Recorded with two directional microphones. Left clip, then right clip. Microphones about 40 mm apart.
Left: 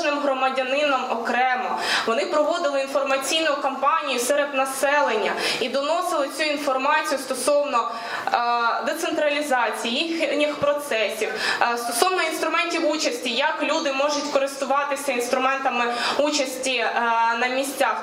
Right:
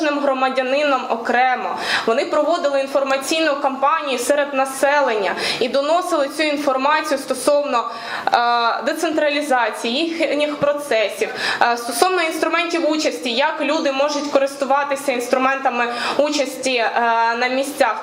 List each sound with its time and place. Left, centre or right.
0.7 s a man's voice: right
3.4 s a man's voice: right
4.6 s a woman's voice: right
15.6 s speech: centre
16.4 s a man's voice: right